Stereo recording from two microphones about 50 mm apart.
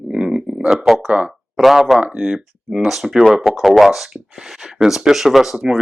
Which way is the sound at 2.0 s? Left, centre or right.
Right.